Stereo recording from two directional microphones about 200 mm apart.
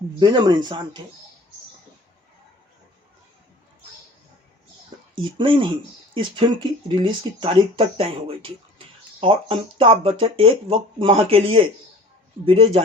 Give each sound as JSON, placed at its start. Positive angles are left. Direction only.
{"t": 0.2, "sound": "speech", "side_deg": -20}
{"t": 5.1, "sound": "speech", "side_deg": -25}